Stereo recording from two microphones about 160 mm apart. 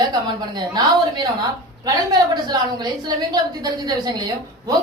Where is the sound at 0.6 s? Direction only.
25° right (ahead or behind).